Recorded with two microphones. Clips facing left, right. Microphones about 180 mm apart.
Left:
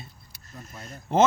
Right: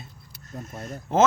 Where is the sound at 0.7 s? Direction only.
45° right (ahead or behind).